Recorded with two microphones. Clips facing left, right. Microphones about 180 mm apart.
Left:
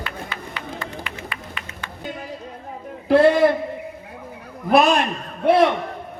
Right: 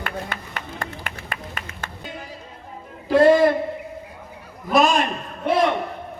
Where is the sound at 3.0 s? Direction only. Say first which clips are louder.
Even; 65° left (ahead or behind).